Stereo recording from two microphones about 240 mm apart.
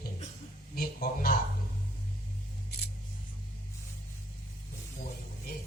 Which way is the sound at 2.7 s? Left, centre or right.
Left.